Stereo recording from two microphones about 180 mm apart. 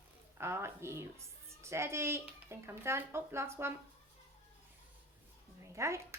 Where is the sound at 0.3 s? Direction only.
15° right (ahead or behind).